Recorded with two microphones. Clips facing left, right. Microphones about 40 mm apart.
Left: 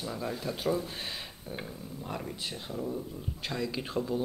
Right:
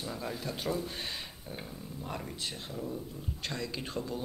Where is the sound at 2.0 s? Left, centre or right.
Centre.